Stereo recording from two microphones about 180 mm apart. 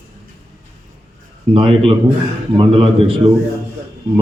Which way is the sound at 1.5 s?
30° right (ahead or behind).